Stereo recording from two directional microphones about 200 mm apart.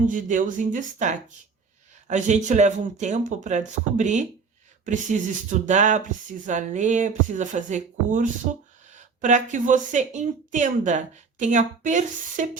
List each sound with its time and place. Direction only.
0.0 s speech: 40° right (ahead or behind)